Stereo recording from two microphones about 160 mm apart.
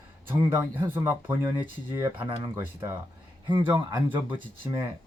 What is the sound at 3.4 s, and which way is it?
Speech, 30° right (ahead or behind).